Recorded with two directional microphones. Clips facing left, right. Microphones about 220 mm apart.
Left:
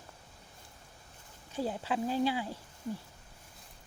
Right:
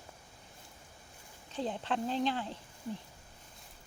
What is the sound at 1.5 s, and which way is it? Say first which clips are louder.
Speech: left 1 dB; 10° left (ahead or behind).